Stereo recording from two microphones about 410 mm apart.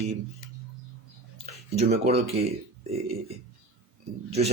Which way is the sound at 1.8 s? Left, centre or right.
Centre.